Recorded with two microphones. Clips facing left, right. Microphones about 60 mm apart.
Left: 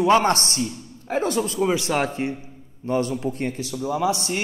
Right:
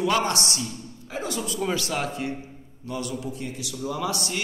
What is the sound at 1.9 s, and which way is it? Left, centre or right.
A man's voice, left.